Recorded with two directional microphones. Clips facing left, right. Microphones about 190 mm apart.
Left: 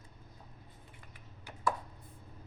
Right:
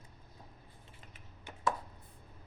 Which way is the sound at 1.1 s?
25° right (ahead or behind).